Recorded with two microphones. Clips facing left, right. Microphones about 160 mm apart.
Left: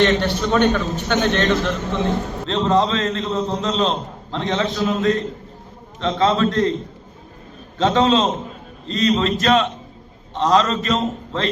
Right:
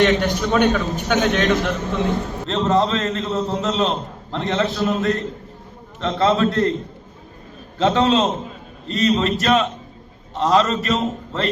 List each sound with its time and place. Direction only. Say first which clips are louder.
0.0 s a man's voice: even; 10° right (ahead or behind)
7.8 s a man's voice: even; 5° right (ahead or behind)